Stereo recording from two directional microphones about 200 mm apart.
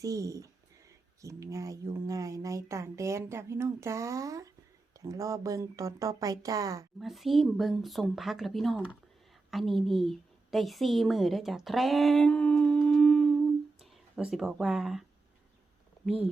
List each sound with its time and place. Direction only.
0.0 s speech: 15° right (ahead or behind)
7.0 s a woman's voice: centre (ahead or behind)